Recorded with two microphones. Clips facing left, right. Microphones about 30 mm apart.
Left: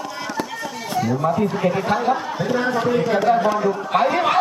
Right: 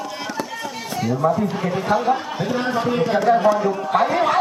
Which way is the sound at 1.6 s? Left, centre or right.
Centre.